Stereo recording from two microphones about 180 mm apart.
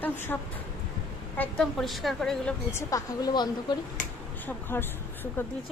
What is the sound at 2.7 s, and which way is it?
A woman's voice, 20° left (ahead or behind).